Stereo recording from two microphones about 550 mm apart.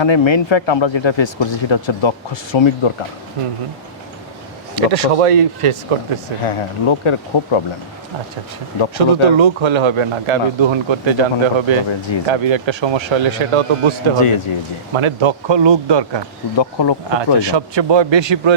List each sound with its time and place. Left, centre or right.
0.0 s speech: left
4.7 s speech: right
6.4 s speech: left
9.0 s a man's voice: right
11.9 s speech: left
12.3 s a man's voice: right
14.2 s speech: left
14.9 s speech: right
16.6 s speech: left
17.4 s speech: right